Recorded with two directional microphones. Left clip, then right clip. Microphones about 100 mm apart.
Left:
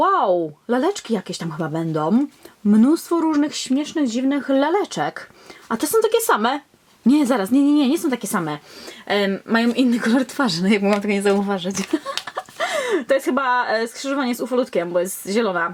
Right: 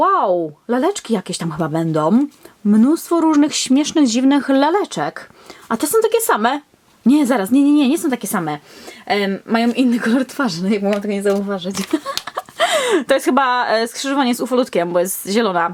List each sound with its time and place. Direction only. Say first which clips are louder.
0.0 s speech: right 2 dB; centre (ahead or behind)
2.6 s a woman's voice: right 2 dB; centre (ahead or behind)
3.2 s speech: right 6 dB; 25° right (ahead or behind)
4.4 s a woman's voice: right 3 dB; 15° right (ahead or behind); by 10.6 s 5° left (ahead or behind)
11.7 s a woman's voice: right 3 dB; 10° right (ahead or behind)
12.2 s a sound: right 3 dB; 5° right (ahead or behind)
12.5 s speech: right 6 dB; 15° right (ahead or behind)